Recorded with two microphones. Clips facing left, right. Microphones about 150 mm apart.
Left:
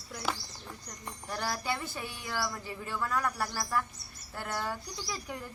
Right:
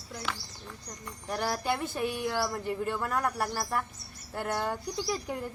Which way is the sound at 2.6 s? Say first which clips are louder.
Right 5 dB; 55° right (ahead or behind).